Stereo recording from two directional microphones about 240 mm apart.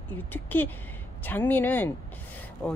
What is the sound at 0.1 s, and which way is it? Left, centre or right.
Speech, centre.